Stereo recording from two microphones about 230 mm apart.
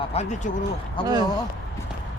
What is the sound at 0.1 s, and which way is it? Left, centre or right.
Speech, left.